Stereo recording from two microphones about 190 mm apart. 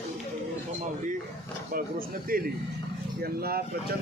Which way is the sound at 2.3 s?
50° right (ahead or behind).